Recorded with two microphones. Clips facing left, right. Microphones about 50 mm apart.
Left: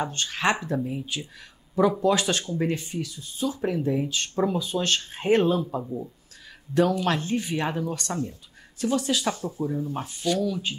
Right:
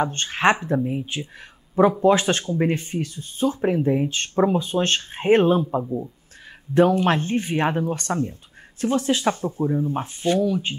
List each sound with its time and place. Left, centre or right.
0.0 s speech: right